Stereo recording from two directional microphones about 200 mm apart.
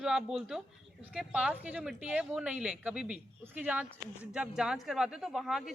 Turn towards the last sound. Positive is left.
turn(degrees=0)  # may be behind; listen again after turning